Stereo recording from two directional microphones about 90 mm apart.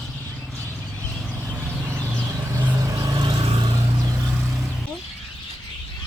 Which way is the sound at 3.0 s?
50° right (ahead or behind).